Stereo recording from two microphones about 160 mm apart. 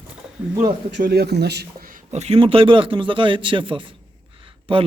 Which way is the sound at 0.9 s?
80° right.